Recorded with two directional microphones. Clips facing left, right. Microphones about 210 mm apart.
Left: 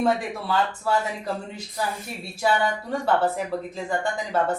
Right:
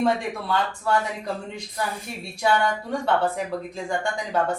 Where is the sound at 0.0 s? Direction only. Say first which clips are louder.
Even; 5° left (ahead or behind).